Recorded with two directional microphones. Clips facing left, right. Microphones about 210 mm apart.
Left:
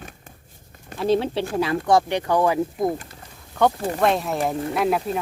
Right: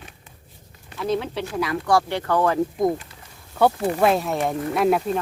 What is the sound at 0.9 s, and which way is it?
Speech, 30° left (ahead or behind).